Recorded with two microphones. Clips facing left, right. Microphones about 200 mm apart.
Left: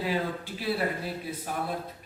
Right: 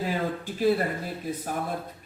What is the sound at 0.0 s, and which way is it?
Speech, 45° right (ahead or behind).